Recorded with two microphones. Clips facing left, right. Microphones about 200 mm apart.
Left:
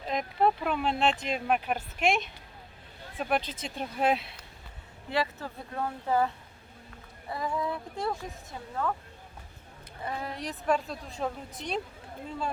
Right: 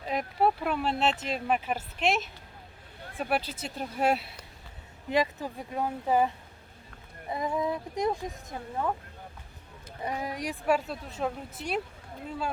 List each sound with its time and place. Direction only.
0.0 s a woman's voice: 5° right (ahead or behind)
5.0 s a woman's voice: 15° right (ahead or behind)
10.0 s a woman's voice: 15° right (ahead or behind)